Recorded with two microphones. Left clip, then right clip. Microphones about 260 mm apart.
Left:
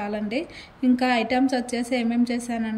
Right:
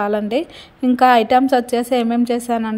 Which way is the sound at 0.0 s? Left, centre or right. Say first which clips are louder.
Right 9 dB; centre.